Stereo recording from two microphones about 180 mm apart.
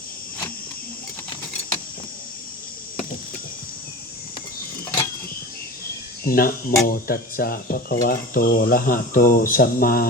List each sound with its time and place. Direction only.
6.2 s speech: 55° left (ahead or behind)